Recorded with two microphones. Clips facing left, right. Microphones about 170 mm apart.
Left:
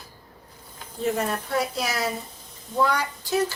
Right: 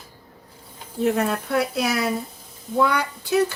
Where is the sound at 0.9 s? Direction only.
65° right (ahead or behind).